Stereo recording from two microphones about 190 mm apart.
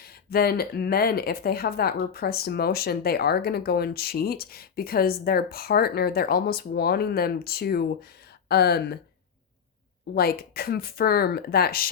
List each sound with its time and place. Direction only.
0.0 s speech: 55° left (ahead or behind)
10.2 s speech: 55° left (ahead or behind)